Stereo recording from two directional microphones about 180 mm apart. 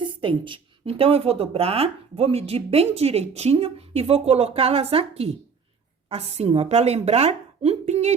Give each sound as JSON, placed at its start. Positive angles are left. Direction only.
{"t": 0.0, "sound": "a woman's voice", "side_deg": -30}